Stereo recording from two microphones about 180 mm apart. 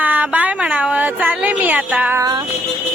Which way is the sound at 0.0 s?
10° right (ahead or behind).